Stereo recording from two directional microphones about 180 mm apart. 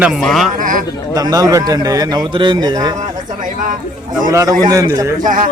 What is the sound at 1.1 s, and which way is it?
A man's voice, 20° right (ahead or behind).